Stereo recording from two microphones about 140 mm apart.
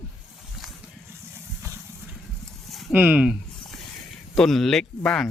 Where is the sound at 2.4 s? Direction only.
Centre (ahead or behind).